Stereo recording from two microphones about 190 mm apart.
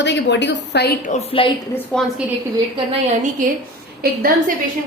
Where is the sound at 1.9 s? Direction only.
5° left (ahead or behind).